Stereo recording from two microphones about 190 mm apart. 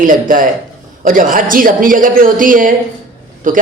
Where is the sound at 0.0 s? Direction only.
45° right (ahead or behind).